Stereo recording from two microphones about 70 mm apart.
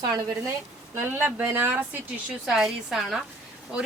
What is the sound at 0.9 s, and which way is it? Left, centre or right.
Speech, right.